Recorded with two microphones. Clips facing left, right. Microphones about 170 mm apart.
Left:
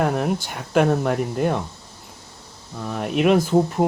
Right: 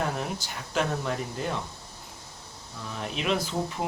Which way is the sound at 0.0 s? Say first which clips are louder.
Left 9 dB; 60° left (ahead or behind).